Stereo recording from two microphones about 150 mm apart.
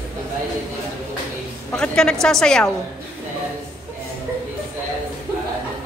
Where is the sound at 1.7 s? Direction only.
5° left (ahead or behind).